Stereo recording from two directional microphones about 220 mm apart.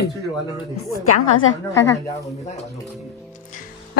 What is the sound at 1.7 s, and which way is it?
Speech, 15° left (ahead or behind).